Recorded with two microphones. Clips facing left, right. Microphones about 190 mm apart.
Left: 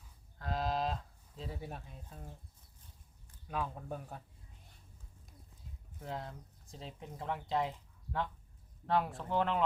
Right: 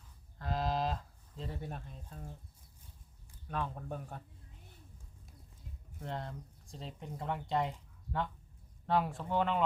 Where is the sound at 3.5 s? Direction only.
5° left (ahead or behind).